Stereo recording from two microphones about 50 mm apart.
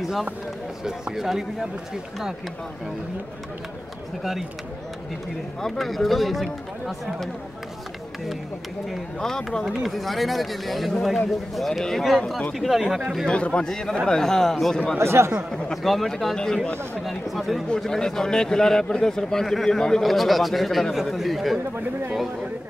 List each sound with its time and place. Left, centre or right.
0.0 s speech: centre
4.2 s speech: centre
5.6 s speech: centre
9.2 s a man's voice: centre
13.3 s a man's voice: centre
15.0 s speech: right
15.5 s speech: centre
16.3 s a man's voice: centre
17.0 s speech: centre
17.7 s a man's voice: centre